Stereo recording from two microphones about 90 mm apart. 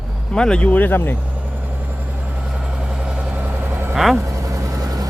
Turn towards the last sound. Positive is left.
turn(degrees=-40)  # may be behind; listen again after turning